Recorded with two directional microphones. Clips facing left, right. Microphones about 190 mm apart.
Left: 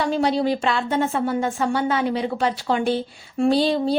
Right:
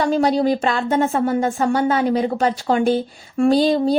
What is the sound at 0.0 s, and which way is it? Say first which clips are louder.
Speech: right 3 dB; 45° right (ahead or behind).